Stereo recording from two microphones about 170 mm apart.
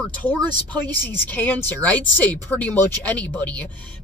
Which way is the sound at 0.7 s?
10° left (ahead or behind).